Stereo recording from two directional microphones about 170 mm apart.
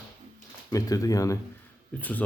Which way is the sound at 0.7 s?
20° left (ahead or behind).